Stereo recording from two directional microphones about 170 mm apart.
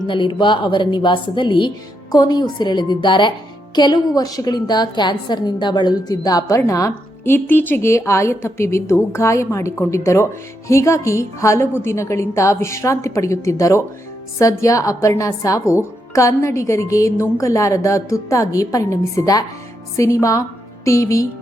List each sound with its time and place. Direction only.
0.1 s a woman's voice: 25° left (ahead or behind)